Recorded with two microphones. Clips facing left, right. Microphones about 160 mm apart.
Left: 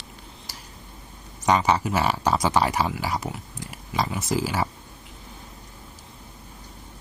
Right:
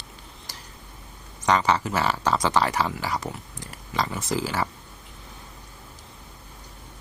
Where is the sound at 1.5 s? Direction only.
10° left (ahead or behind).